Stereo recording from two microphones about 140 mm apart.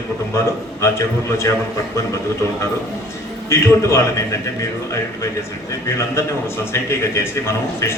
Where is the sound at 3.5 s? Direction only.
20° left (ahead or behind).